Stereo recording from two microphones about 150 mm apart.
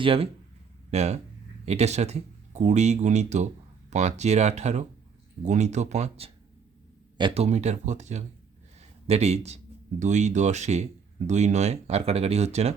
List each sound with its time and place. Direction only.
0.0 s speech: 40° right (ahead or behind)
7.2 s speech: 35° right (ahead or behind)
7.4 s speech: 50° right (ahead or behind)